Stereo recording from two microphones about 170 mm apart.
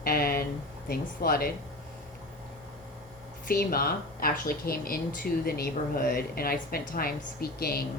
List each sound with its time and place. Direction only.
0.0 s a sound: 60° left (ahead or behind)
0.9 s speech: 60° left (ahead or behind)
3.4 s speech: 60° left (ahead or behind)